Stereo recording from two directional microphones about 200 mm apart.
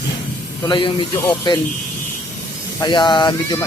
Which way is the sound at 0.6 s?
25° left (ahead or behind).